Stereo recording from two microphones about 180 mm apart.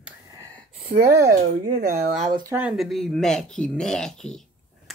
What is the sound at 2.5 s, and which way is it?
Speech, 5° right (ahead or behind).